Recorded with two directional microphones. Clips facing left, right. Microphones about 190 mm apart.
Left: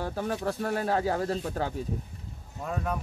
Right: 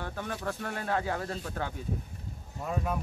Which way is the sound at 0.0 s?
35° left (ahead or behind).